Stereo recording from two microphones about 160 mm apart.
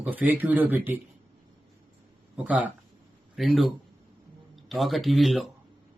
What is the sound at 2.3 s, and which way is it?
Speech, 10° right (ahead or behind).